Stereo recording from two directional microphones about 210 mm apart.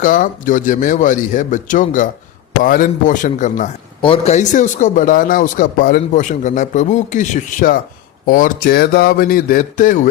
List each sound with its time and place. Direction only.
0.0 s a man's voice: 40° left (ahead or behind)